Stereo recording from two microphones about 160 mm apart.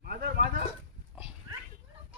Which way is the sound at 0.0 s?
70° right (ahead or behind).